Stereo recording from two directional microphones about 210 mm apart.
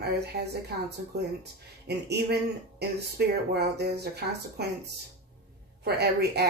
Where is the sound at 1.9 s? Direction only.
50° right (ahead or behind).